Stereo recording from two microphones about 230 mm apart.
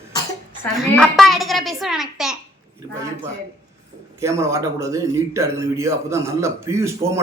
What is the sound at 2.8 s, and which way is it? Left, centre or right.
Speech, centre.